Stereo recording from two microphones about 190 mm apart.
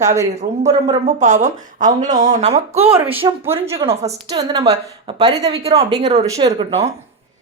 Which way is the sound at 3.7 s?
30° right (ahead or behind).